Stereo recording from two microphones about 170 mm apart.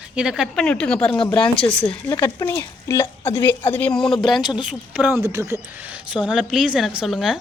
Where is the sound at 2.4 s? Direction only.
20° left (ahead or behind); by 5.2 s 5° right (ahead or behind).